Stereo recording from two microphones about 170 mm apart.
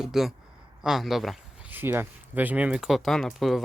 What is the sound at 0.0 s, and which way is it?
Speech, centre (ahead or behind).